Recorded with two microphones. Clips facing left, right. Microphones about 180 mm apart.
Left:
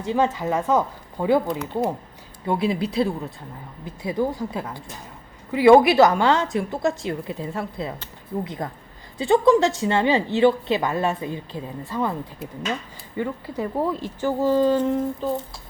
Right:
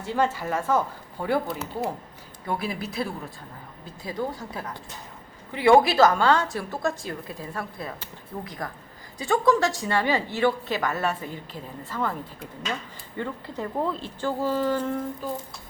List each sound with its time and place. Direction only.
0.0 s a woman's voice: 15° left (ahead or behind)
13.1 s speech: 10° left (ahead or behind)